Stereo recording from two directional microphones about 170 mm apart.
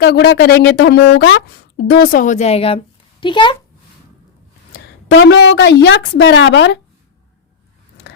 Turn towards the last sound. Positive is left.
turn(degrees=90)